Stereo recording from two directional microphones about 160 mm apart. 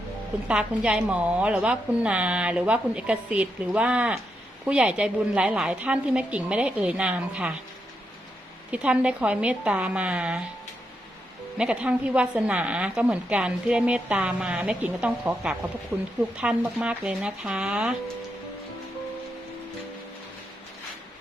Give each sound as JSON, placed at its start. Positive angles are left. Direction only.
{"t": 0.4, "sound": "a woman's voice", "side_deg": -5}
{"t": 8.7, "sound": "a woman's voice", "side_deg": -10}
{"t": 11.5, "sound": "a woman's voice", "side_deg": -5}
{"t": 15.9, "sound": "a woman's voice", "side_deg": -20}
{"t": 16.4, "sound": "a woman's voice", "side_deg": -10}